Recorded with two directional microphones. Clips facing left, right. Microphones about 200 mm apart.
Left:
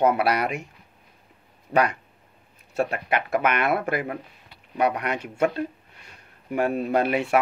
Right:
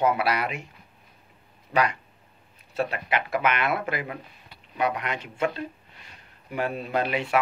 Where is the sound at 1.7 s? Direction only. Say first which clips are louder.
Left 3 dB; 40° left (ahead or behind).